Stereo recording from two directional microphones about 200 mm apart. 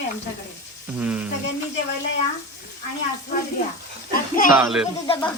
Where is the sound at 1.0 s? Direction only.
5° right (ahead or behind).